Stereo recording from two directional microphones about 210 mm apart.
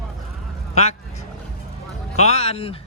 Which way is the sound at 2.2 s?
30° left (ahead or behind).